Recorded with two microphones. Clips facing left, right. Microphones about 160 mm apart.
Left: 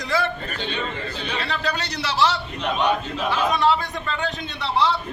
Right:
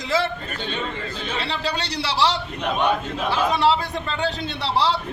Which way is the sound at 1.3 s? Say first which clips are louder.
Even; 30° right (ahead or behind).